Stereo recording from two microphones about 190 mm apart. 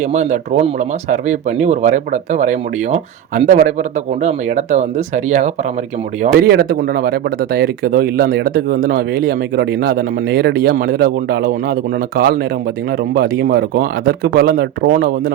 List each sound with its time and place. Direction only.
0.0 s speech: 40° right (ahead or behind)
6.3 s speech: 55° right (ahead or behind)